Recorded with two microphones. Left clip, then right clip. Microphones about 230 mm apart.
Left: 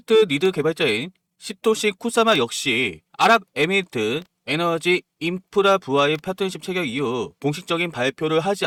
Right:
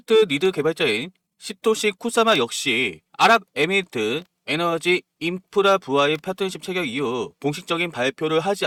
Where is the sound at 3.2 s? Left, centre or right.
Centre.